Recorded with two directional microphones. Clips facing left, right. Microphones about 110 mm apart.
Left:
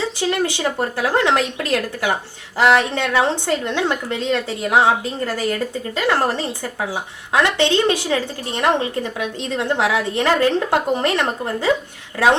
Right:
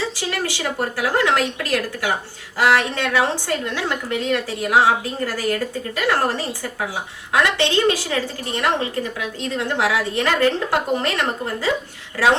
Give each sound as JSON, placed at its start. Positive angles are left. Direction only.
{"t": 0.0, "sound": "a woman's voice", "side_deg": 20}